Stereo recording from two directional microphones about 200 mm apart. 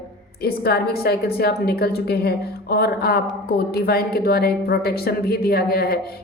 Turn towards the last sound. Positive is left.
turn(degrees=50)  # may be behind; listen again after turning